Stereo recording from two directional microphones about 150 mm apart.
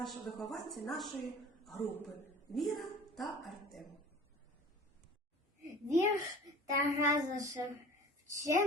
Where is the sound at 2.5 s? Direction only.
Centre (ahead or behind).